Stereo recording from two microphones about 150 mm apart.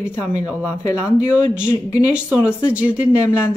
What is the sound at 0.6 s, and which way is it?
Speech, 20° left (ahead or behind).